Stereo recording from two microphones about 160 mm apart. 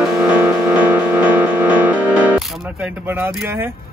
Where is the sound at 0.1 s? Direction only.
5° right (ahead or behind).